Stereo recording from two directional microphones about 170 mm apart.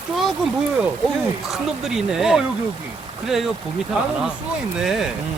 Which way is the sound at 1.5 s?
Centre (ahead or behind).